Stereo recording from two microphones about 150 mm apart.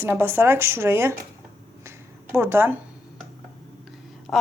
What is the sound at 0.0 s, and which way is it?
Speech, 15° right (ahead or behind).